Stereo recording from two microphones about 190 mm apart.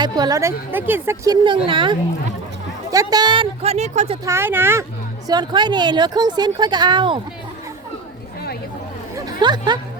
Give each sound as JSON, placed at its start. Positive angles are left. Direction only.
{"t": 0.0, "sound": "a woman's voice", "side_deg": -20}
{"t": 4.3, "sound": "speech", "side_deg": -10}
{"t": 5.3, "sound": "a woman's voice", "side_deg": -25}
{"t": 9.1, "sound": "a sound", "side_deg": -25}